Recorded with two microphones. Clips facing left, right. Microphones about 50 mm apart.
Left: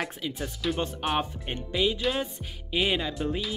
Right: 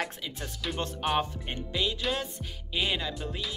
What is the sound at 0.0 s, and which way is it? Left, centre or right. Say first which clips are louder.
Speech: left 3 dB; centre.